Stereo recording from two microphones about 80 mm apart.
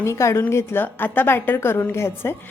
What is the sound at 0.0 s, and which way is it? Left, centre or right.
A woman's voice, left.